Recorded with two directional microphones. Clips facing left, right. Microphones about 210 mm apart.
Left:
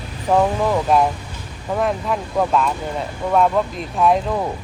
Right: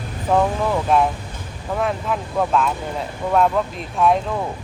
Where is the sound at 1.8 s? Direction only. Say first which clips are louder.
Left 2 dB; centre (ahead or behind).